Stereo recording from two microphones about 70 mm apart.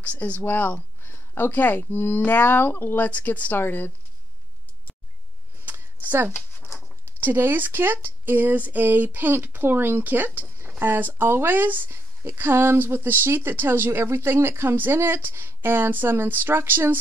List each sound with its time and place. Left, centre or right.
0.0 s speech: left
5.7 s a sound: right
7.1 s a woman's voice: right